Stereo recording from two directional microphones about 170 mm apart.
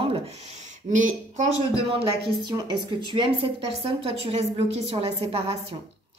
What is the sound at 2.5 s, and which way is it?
A woman's voice, 25° right (ahead or behind).